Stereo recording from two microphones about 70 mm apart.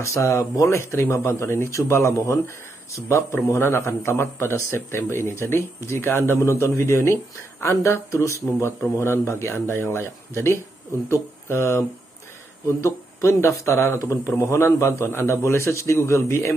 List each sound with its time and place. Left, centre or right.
0.0 s a man's voice: left